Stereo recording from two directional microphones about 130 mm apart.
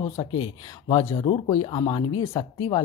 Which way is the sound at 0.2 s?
40° left (ahead or behind).